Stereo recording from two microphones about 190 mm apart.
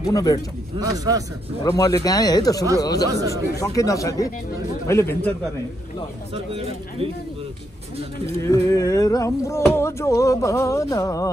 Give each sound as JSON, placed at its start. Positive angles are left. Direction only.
{"t": 0.0, "sound": "speech", "side_deg": 20}
{"t": 0.7, "sound": "a man's voice", "side_deg": -20}
{"t": 1.6, "sound": "speech", "side_deg": 20}
{"t": 3.1, "sound": "a man's voice", "side_deg": -20}
{"t": 3.5, "sound": "a sound", "side_deg": 15}
{"t": 6.3, "sound": "speech", "side_deg": -30}
{"t": 8.4, "sound": "a sound", "side_deg": 15}